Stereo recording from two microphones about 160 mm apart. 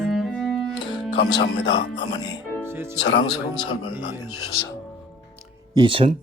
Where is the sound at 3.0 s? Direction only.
90° left.